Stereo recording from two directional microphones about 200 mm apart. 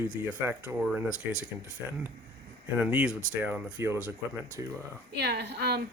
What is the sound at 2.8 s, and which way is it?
Speech, 5° right (ahead or behind).